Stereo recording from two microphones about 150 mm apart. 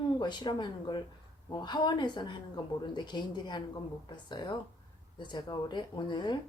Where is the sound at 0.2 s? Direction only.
30° left (ahead or behind).